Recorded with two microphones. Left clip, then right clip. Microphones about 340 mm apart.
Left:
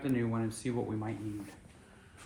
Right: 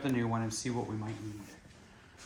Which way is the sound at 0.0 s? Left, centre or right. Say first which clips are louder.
Even; centre.